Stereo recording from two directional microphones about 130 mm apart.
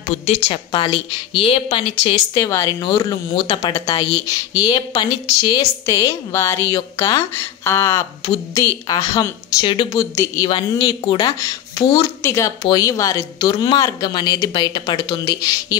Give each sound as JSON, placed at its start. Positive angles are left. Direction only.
{"t": 0.1, "sound": "a woman's voice", "side_deg": 55}
{"t": 0.7, "sound": "a woman's voice", "side_deg": 40}
{"t": 10.5, "sound": "a woman's voice", "side_deg": 40}